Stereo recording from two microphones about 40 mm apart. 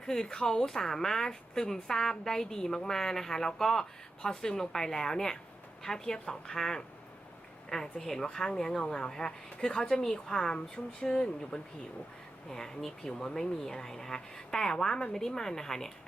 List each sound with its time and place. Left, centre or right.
0.0 s speech: centre